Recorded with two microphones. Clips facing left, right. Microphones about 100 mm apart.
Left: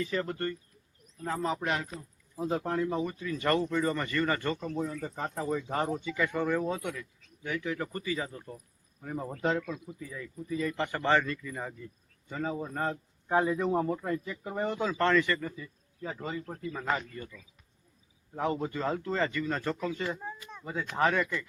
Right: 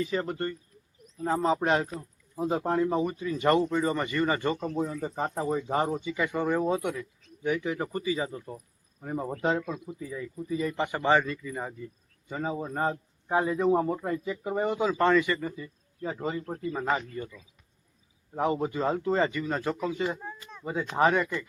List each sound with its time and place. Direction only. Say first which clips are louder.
0.0 s speech: right 2 dB; 15° right (ahead or behind)
13.2 s speech: right 2 dB; 5° right (ahead or behind); by 16.8 s 25° right (ahead or behind)
16.8 s speech: right 2 dB; 15° right (ahead or behind)